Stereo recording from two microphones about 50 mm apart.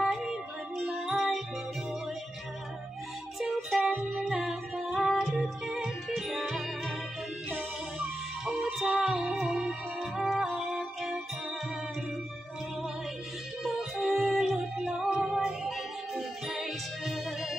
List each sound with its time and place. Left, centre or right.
0.0 s music: centre
3.3 s music: centre
8.5 s music: centre
13.7 s music: centre